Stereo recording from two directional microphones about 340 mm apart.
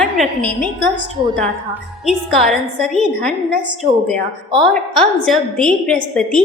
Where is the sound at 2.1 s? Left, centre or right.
Centre.